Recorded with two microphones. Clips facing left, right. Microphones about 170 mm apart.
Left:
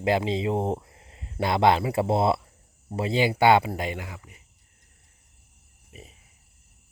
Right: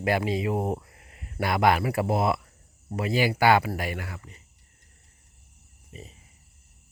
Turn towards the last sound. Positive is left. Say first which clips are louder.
# right 3 dB
turn(degrees=5)  # may be behind; listen again after turning